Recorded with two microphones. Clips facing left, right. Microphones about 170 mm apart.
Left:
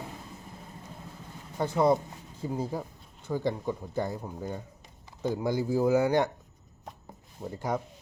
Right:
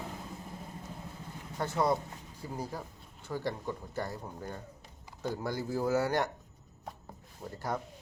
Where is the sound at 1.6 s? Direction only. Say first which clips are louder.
Left 6 dB; 20° left (ahead or behind).